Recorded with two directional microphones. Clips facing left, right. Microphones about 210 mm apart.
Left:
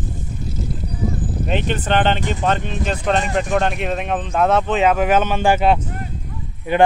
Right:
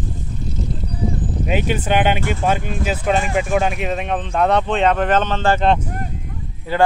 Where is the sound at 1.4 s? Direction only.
5° right (ahead or behind); by 5.8 s 10° left (ahead or behind).